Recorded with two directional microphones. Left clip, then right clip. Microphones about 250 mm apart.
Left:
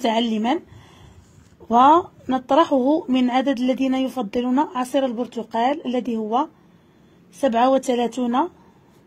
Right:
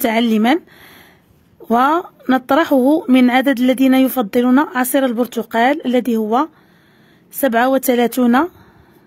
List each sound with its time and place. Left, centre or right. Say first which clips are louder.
0.0 s speech: right 5 dB; right